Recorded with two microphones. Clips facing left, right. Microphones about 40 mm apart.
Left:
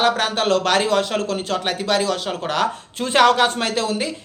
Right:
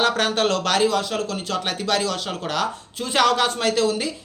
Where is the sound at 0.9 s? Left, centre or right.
Left.